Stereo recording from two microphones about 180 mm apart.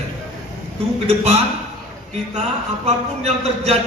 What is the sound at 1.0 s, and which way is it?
Speech, 35° right (ahead or behind).